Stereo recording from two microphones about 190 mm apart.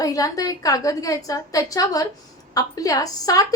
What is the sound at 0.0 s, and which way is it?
A woman's voice, 20° left (ahead or behind).